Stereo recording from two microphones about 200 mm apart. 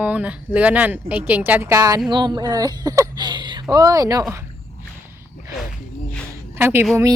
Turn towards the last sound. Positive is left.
turn(degrees=-10)  # may be behind; listen again after turning